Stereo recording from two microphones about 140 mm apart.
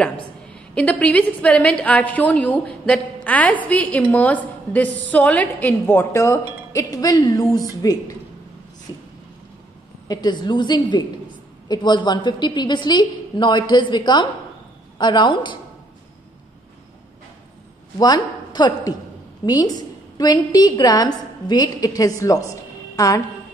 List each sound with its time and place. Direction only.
0.7 s a woman's voice: 10° left (ahead or behind); by 8.2 s 25° left (ahead or behind)
8.9 s a sound: 30° left (ahead or behind)
10.0 s a woman's voice: 30° left (ahead or behind)
17.9 s a woman's voice: 30° left (ahead or behind)